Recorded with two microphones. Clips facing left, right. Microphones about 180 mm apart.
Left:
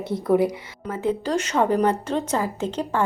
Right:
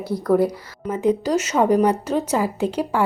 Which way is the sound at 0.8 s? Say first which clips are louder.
Right 4 dB; 15° right (ahead or behind).